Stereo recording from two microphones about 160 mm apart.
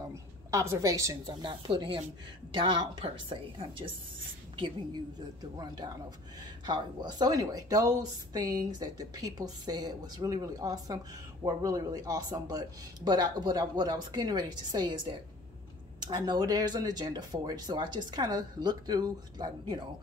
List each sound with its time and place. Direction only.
0.1 s a woman's voice: 20° right (ahead or behind); by 3.9 s 35° right (ahead or behind)
6.6 s a woman's voice: 25° right (ahead or behind)